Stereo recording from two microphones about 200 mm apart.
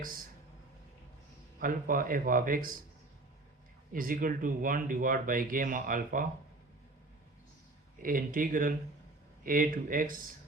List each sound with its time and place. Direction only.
1.5 s speech: 45° right (ahead or behind)
3.9 s speech: 45° right (ahead or behind)
8.0 s speech: 45° right (ahead or behind)